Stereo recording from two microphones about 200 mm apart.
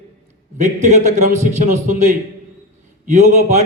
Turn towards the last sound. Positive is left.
turn(degrees=-35)  # may be behind; listen again after turning